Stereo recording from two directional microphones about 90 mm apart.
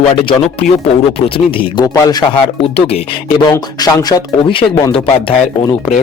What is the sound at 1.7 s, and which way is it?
Speech, 45° left (ahead or behind).